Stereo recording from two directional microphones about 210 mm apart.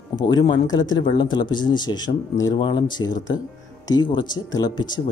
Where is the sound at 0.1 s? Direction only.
20° left (ahead or behind).